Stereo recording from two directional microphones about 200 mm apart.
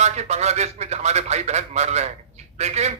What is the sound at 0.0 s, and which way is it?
A man's voice, 35° right (ahead or behind).